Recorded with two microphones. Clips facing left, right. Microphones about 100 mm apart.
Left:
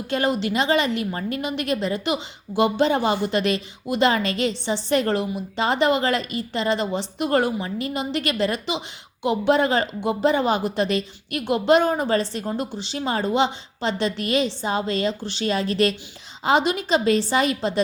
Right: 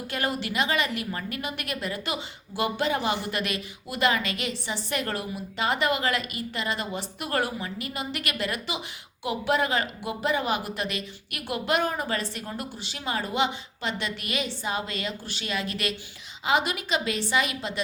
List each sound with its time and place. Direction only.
0.1 s a woman's voice: 25° left (ahead or behind)